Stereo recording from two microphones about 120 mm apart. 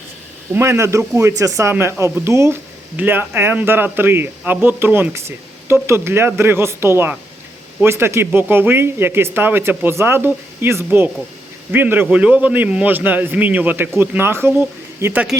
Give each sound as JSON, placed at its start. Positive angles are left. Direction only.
{"t": 0.5, "sound": "a man's voice", "side_deg": -20}